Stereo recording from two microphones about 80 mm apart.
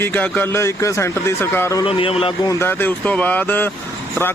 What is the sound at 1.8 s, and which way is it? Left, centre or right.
Speech, left.